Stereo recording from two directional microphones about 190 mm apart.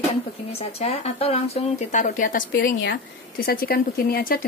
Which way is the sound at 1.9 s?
40° left (ahead or behind).